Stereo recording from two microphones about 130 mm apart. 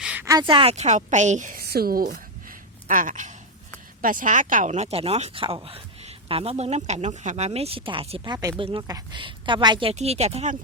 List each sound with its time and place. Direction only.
0.0 s a sound: 10° right (ahead or behind)
0.3 s a woman's voice: 35° right (ahead or behind)
0.7 s a woman's voice: 60° right (ahead or behind)
2.8 s a man's voice: 90° right; by 8.2 s 45° right (ahead or behind)
8.2 s a woman's voice: 30° right (ahead or behind)
9.9 s speech: 55° right (ahead or behind)